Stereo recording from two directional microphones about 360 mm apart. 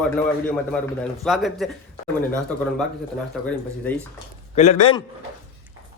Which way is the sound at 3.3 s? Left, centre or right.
Centre.